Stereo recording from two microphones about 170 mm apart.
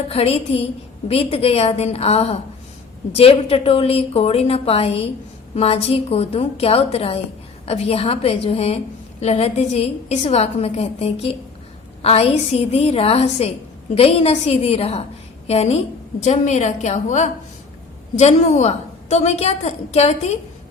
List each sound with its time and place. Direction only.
0.1 s a woman's voice: 35° left (ahead or behind)